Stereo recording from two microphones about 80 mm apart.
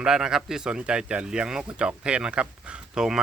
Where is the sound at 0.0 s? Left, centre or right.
Centre.